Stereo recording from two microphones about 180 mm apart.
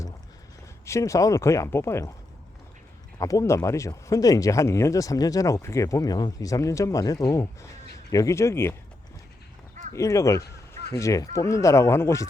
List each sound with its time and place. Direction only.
0.9 s speech: 15° left (ahead or behind)
3.2 s speech: 20° left (ahead or behind)
9.9 s speech: 15° left (ahead or behind)